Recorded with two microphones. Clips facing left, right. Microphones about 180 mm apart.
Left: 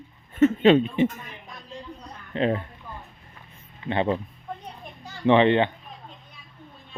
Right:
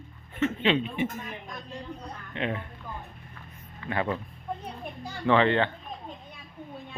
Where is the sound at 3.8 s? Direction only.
25° left (ahead or behind).